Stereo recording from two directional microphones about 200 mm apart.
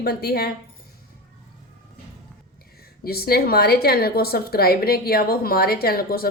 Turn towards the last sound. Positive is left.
turn(degrees=50)  # may be behind; listen again after turning